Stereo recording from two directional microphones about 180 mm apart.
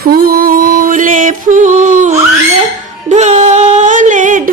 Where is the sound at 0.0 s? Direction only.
55° right (ahead or behind).